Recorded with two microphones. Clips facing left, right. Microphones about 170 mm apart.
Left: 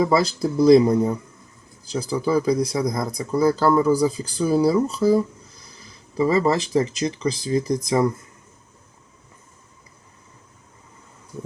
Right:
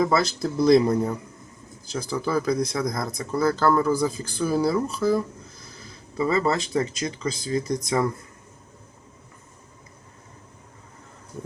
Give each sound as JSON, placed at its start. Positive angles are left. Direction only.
{"t": 0.0, "sound": "speech", "side_deg": 15}